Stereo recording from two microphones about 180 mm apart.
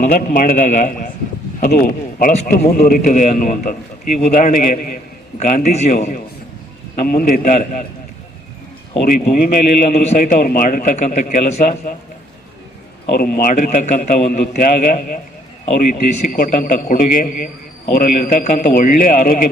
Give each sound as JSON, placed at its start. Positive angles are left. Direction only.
{"t": 0.0, "sound": "a man's voice", "side_deg": 50}
{"t": 7.1, "sound": "a man's voice", "side_deg": 50}
{"t": 9.0, "sound": "a man's voice", "side_deg": 50}
{"t": 9.9, "sound": "a man's voice", "side_deg": 35}
{"t": 10.2, "sound": "a man's voice", "side_deg": 50}
{"t": 13.1, "sound": "a man's voice", "side_deg": 55}